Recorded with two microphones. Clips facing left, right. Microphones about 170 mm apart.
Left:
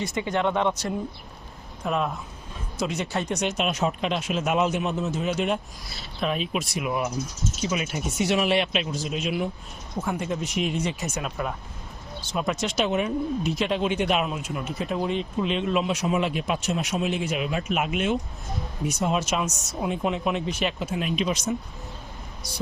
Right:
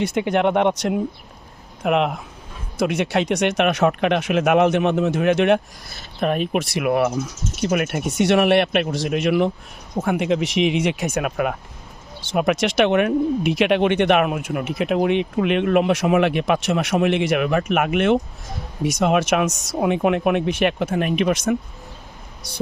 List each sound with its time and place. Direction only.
0.0 s speech: 65° right (ahead or behind)
1.8 s speech: 70° right (ahead or behind)
5.9 s speech: 50° right (ahead or behind); by 9.5 s 70° right (ahead or behind)
9.9 s speech: 55° right (ahead or behind)
10.2 s speech: 85° right; by 18.2 s 65° right (ahead or behind)
18.9 s speech: 80° right; by 21.5 s 60° right (ahead or behind)